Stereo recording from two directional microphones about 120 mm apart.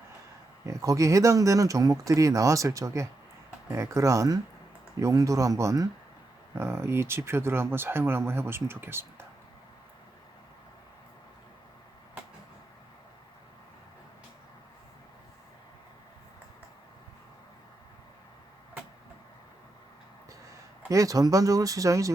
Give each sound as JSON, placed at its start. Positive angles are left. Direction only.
{"t": 0.6, "sound": "speech", "side_deg": -30}
{"t": 20.9, "sound": "speech", "side_deg": -30}